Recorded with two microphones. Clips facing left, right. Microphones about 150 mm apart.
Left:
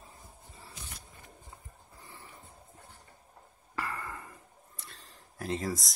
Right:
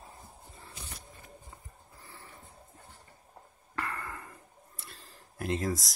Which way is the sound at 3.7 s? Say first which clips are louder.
Even; 5° left (ahead or behind).